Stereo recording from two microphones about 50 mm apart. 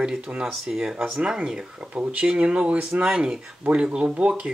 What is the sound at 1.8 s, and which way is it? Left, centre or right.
Speech, right.